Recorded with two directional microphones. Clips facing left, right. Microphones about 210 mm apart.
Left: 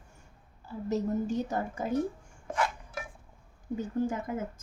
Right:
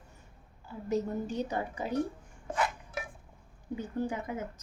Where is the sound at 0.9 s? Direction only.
45° left (ahead or behind).